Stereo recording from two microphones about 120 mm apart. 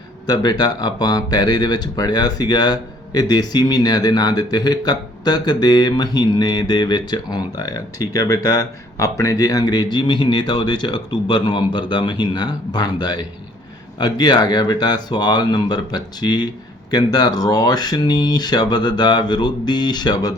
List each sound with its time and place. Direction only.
0.3 s speech: 35° left (ahead or behind)